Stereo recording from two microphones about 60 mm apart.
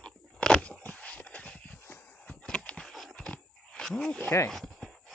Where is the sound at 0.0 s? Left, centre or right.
Centre.